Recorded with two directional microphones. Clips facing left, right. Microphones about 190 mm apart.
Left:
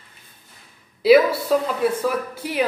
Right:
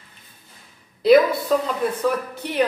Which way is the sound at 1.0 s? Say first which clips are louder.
Even; 5° left (ahead or behind).